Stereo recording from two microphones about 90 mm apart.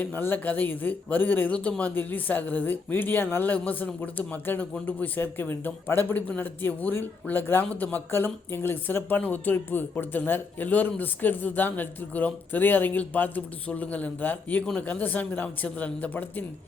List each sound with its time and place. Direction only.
0.0 s speech: 20° left (ahead or behind)